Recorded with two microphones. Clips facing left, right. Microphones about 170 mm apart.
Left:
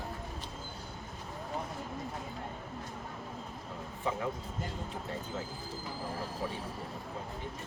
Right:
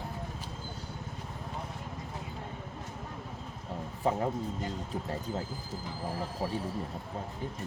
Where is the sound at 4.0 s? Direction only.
40° right (ahead or behind).